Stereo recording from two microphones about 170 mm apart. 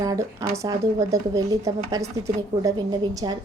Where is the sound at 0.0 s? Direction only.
20° right (ahead or behind).